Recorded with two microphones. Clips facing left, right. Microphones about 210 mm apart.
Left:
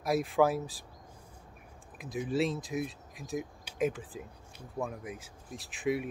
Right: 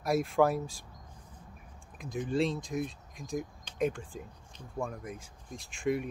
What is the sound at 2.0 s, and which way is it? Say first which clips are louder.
Speech: even; 5° left (ahead or behind).